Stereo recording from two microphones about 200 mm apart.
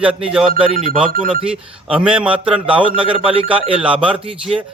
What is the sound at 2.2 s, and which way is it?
Speech, 5° right (ahead or behind).